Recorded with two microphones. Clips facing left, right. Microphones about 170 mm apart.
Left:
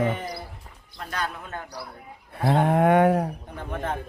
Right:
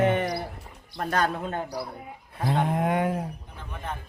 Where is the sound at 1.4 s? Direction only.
30° right (ahead or behind).